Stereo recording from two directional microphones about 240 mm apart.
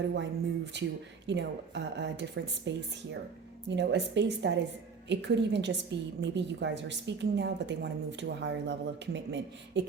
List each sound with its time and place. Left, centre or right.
0.1 s a woman's voice: right
3.8 s a woman's voice: right